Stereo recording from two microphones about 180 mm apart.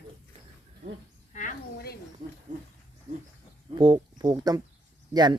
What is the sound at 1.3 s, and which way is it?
Speech, 45° left (ahead or behind).